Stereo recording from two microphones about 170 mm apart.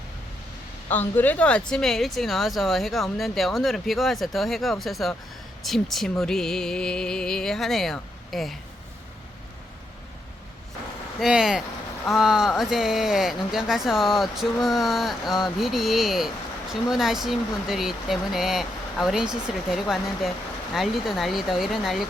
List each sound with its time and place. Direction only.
0.9 s speech: 10° left (ahead or behind)
11.2 s speech: 5° right (ahead or behind)